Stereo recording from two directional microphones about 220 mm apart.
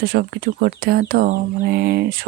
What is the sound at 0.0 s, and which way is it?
Speech, 45° right (ahead or behind).